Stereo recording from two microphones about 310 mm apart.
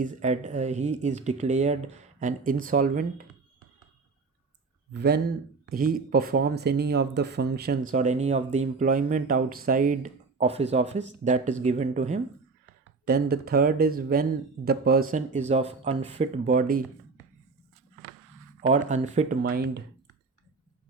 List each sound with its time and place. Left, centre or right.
0.0 s speech: right
4.9 s speech: right
18.6 s speech: right